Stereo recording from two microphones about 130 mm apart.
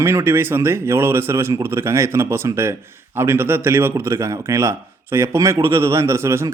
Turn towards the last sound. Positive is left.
turn(degrees=-20)  # may be behind; listen again after turning